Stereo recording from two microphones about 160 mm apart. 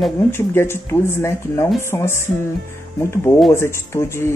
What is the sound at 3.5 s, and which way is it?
Speech, 15° left (ahead or behind).